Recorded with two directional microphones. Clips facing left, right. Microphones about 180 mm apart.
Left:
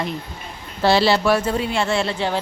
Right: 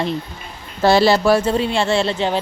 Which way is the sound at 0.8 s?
45° right (ahead or behind).